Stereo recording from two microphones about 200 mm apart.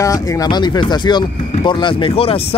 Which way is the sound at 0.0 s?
15° left (ahead or behind).